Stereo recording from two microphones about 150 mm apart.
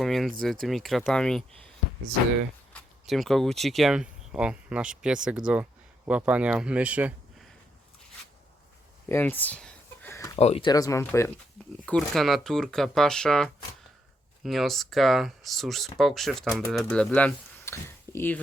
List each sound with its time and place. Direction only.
0.0 s speech: centre (ahead or behind)
2.7 s speech: centre (ahead or behind)
9.0 s a sound: 15° left (ahead or behind)
10.3 s speech: 45° left (ahead or behind)
10.7 s speech: 25° left (ahead or behind)
11.9 s speech: centre (ahead or behind)